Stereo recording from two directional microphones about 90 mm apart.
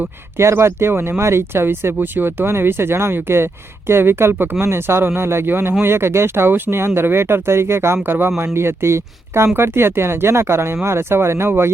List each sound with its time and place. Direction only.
0.3 s speech: 30° right (ahead or behind)